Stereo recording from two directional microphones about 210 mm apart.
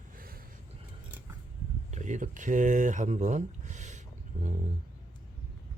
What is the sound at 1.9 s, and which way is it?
Speech, 35° right (ahead or behind).